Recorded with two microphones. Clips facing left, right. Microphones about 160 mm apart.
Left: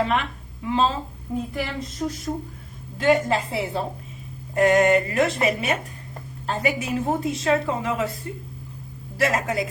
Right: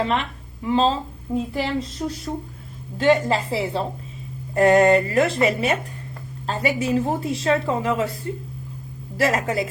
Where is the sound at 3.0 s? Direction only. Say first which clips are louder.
Right 2 dB; 30° right (ahead or behind).